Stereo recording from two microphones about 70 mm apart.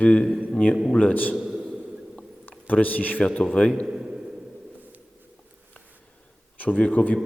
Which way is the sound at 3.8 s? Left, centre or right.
Centre.